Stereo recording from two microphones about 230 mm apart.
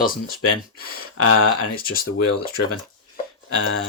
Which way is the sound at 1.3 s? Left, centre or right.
Left.